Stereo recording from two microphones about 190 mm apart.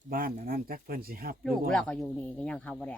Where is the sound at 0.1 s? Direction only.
50° right (ahead or behind).